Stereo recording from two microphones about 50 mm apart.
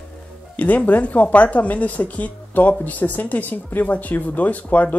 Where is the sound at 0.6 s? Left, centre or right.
Left.